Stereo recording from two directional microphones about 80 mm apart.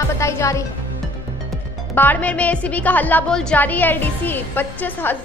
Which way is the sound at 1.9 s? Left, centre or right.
Left.